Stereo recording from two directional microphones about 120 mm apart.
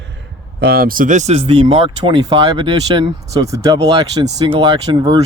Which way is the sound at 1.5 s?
45° right (ahead or behind).